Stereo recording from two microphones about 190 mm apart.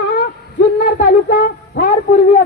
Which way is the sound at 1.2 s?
55° left (ahead or behind).